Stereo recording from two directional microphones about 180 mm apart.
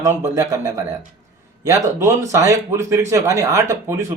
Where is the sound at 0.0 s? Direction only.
15° right (ahead or behind).